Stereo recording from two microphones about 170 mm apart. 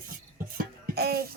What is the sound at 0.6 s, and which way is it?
Music, 65° right (ahead or behind).